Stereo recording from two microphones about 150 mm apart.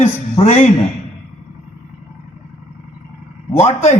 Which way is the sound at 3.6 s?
45° left (ahead or behind).